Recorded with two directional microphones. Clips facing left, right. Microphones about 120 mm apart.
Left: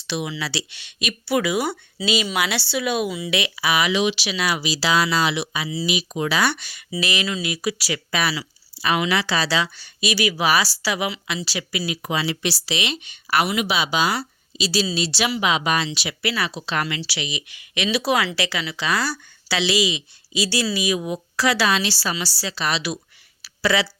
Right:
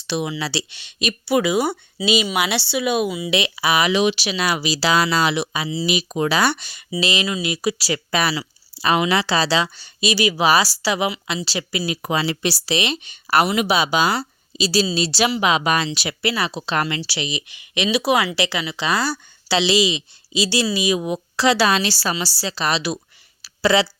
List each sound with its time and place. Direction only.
0.3 s speech: 30° right (ahead or behind)
5.6 s speech: 25° right (ahead or behind)
5.9 s a woman's voice: 40° right (ahead or behind)
16.2 s speech: 25° right (ahead or behind)
21.7 s speech: 40° right (ahead or behind)
23.4 s a sound: 30° right (ahead or behind)